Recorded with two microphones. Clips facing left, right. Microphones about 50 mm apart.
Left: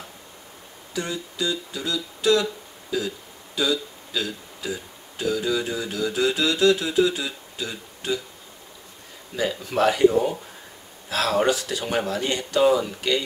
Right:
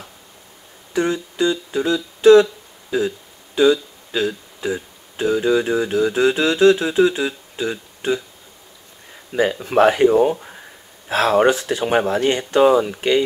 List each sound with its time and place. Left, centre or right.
0.9 s speech: right
9.3 s speech: right